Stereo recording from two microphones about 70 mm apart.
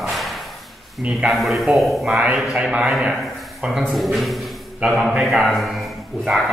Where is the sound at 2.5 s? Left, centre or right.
Centre.